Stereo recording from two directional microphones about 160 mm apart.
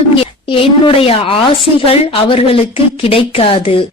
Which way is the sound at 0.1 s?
35° left (ahead or behind).